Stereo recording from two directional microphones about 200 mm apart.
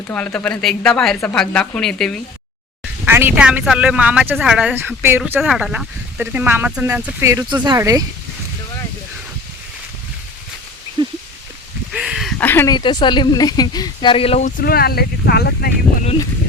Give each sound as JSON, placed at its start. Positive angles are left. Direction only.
{"t": 0.1, "sound": "a woman's voice", "side_deg": 10}
{"t": 3.0, "sound": "speech", "side_deg": -10}
{"t": 11.0, "sound": "a sound", "side_deg": -25}
{"t": 11.9, "sound": "a sound", "side_deg": -5}
{"t": 12.4, "sound": "speech", "side_deg": 10}
{"t": 12.7, "sound": "speech", "side_deg": 20}
{"t": 14.6, "sound": "speech", "side_deg": 50}